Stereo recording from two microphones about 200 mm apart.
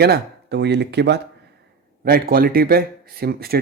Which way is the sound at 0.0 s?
55° right (ahead or behind).